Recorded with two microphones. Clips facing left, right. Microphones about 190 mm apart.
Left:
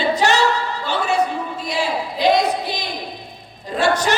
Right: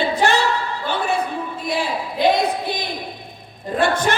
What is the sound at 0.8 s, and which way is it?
Music, 55° right (ahead or behind).